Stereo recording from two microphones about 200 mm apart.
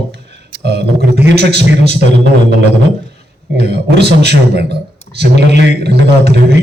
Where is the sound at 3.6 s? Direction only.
55° right (ahead or behind).